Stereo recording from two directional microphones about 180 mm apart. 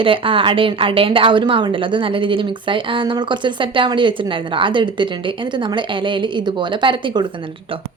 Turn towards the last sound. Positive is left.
turn(degrees=-25)  # may be behind; listen again after turning